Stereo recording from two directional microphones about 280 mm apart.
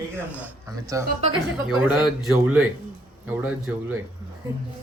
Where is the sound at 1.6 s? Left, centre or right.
Centre.